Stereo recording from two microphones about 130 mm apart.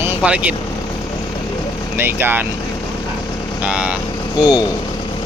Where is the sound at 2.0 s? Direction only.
15° right (ahead or behind).